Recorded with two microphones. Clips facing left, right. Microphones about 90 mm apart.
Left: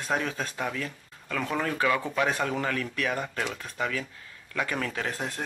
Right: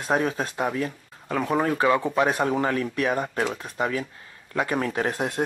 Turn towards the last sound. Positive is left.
turn(degrees=-20)  # may be behind; listen again after turning